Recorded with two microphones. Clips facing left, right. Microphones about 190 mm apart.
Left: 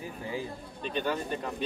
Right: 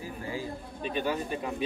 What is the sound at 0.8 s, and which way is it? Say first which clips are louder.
Speech: right 1 dB; 10° right (ahead or behind).